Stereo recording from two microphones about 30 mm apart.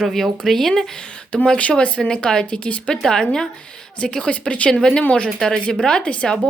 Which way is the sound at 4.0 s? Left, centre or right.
Left.